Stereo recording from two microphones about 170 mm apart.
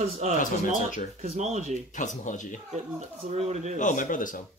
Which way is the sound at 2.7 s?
40° right (ahead or behind).